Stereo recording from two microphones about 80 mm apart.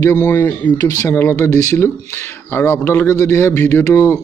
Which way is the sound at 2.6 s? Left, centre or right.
Left.